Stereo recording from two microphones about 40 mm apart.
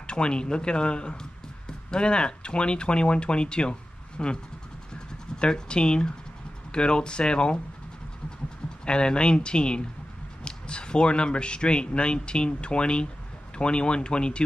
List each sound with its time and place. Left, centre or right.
0.0 s speech: left
4.9 s scratch: left
6.7 s speech: left
8.8 s speech: left